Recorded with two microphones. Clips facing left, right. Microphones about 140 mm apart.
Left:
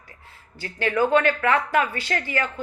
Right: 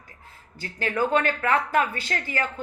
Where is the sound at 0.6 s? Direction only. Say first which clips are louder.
Left 3 dB; 40° right (ahead or behind).